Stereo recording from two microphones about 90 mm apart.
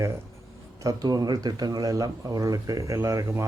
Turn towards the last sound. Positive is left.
turn(degrees=-35)  # may be behind; listen again after turning